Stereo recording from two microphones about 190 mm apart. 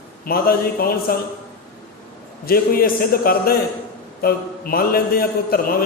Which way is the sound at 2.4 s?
50° left (ahead or behind).